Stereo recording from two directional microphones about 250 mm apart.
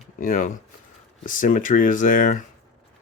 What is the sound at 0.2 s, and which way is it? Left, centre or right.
Speech, left.